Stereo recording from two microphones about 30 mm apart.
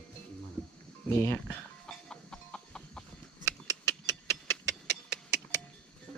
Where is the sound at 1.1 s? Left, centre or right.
Left.